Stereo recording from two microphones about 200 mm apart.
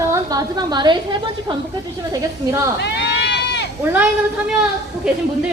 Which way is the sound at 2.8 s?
55° left (ahead or behind).